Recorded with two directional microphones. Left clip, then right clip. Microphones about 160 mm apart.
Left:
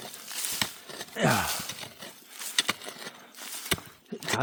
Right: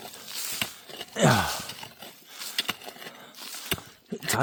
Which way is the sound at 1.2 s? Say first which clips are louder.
Right 3 dB; 90° right.